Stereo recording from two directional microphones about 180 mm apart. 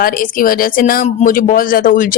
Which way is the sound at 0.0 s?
50° left (ahead or behind).